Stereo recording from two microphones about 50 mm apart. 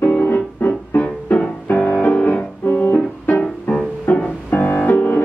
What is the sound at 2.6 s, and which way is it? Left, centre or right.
Music, left.